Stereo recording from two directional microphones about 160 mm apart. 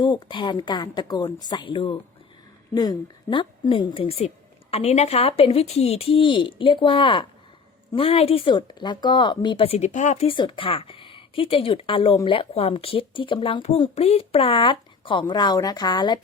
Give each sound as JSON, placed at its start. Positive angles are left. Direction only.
{"t": 0.0, "sound": "a woman's voice", "side_deg": 30}
{"t": 10.2, "sound": "speech", "side_deg": 30}